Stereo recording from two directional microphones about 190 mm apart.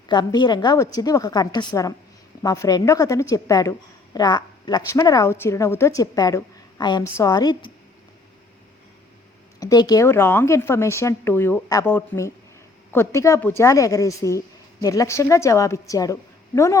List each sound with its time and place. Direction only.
0.1 s a woman's voice: 20° left (ahead or behind)
9.6 s a woman's voice: 20° left (ahead or behind)